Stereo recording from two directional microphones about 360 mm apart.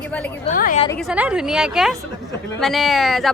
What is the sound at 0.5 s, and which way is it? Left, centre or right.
Speech, left.